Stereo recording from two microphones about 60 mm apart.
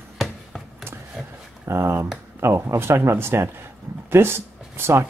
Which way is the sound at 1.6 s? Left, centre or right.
Right.